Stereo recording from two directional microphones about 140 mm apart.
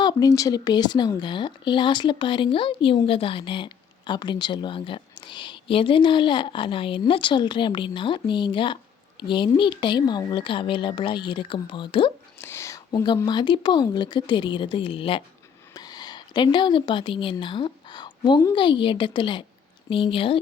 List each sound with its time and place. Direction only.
0.0 s speech: 30° left (ahead or behind)
12.4 s a sound: 20° left (ahead or behind)
13.2 s speech: 30° left (ahead or behind)
15.7 s a woman's voice: 30° left (ahead or behind)